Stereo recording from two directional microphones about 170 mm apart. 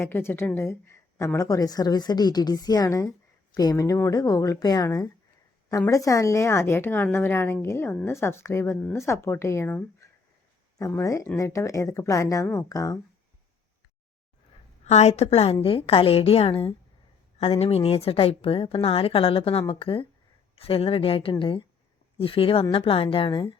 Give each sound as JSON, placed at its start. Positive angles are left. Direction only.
{"t": 0.0, "sound": "a woman's voice", "side_deg": 15}
{"t": 14.8, "sound": "a woman's voice", "side_deg": 40}